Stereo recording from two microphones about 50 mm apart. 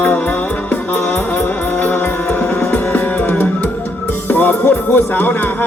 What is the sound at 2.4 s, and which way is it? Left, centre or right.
Music, centre.